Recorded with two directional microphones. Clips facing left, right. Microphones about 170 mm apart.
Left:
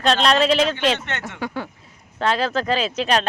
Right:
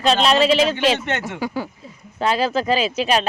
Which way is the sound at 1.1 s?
15° right (ahead or behind).